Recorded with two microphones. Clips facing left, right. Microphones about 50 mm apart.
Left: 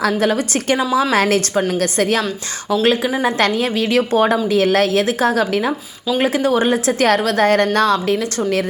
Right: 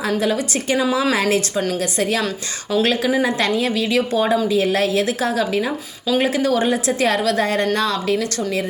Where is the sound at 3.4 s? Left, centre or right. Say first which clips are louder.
Left 2 dB; left.